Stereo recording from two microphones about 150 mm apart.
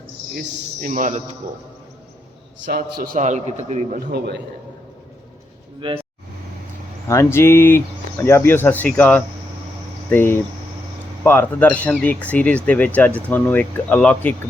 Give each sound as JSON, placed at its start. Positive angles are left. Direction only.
{"t": 0.3, "sound": "a man's voice", "side_deg": -65}
{"t": 2.7, "sound": "a man's voice", "side_deg": -85}
{"t": 3.2, "sound": "a man's voice", "side_deg": -50}
{"t": 5.8, "sound": "speech", "side_deg": -35}
{"t": 7.1, "sound": "speech", "side_deg": 20}